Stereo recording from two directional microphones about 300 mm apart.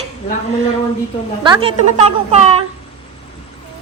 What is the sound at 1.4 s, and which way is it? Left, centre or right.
A woman's voice, centre.